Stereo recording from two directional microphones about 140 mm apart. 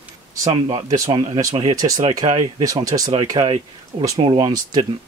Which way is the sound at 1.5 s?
40° right (ahead or behind).